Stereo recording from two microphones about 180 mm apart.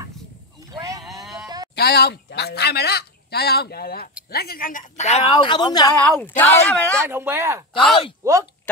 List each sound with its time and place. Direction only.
0.7 s boat: 20° right (ahead or behind)
1.8 s speech: 60° left (ahead or behind); by 5.2 s 40° left (ahead or behind)
5.3 s speech: 25° left (ahead or behind)
6.0 s speech: 10° left (ahead or behind)
7.1 s speech: 15° right (ahead or behind)